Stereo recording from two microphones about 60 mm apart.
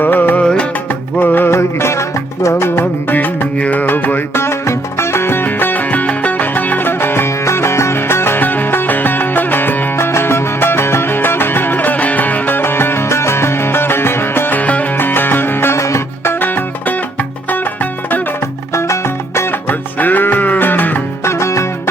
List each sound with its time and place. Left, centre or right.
0.0 s music: left
0.4 s music: centre
1.2 s music: left
1.5 s music: left
2.6 s music: left
4.4 s music: left
10.0 s music: left
15.8 s music: left
16.3 s music: left
18.7 s music: left
19.6 s music: left
21.2 s music: left